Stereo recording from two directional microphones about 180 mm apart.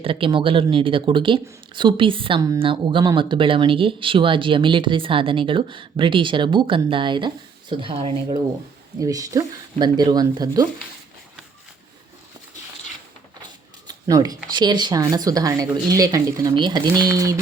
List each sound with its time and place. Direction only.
0.0 s speech: 30° right (ahead or behind)
9.0 s speech: 20° right (ahead or behind)
13.4 s speech: 20° right (ahead or behind)